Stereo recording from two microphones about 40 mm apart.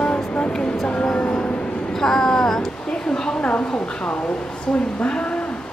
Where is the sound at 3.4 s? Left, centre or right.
Left.